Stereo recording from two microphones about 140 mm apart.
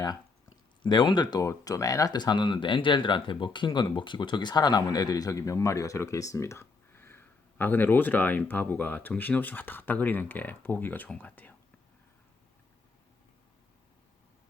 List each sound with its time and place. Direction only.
0.8 s speech: 35° left (ahead or behind); by 11.5 s 10° left (ahead or behind)